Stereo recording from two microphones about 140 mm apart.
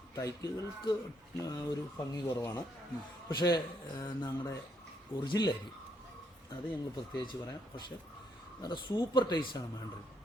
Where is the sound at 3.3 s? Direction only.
30° left (ahead or behind).